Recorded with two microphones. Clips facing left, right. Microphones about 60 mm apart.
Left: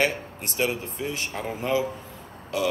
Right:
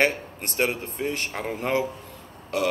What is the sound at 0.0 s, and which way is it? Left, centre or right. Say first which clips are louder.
Speech: right 2 dB; right.